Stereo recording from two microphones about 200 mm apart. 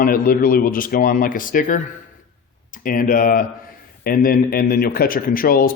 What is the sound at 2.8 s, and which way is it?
Speech, 45° left (ahead or behind).